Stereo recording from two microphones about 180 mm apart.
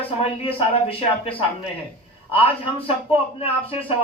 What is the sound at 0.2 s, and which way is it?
A man's voice, 30° left (ahead or behind).